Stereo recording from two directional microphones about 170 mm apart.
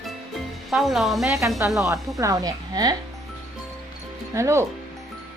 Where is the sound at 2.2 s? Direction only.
20° right (ahead or behind).